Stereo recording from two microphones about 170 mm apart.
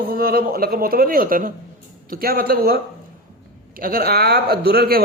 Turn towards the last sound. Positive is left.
turn(degrees=-65)  # may be behind; listen again after turning